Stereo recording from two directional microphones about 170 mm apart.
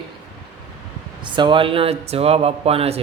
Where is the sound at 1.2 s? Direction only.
30° right (ahead or behind).